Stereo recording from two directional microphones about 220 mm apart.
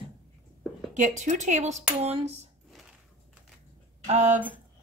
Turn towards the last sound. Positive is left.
turn(degrees=-30)  # may be behind; listen again after turning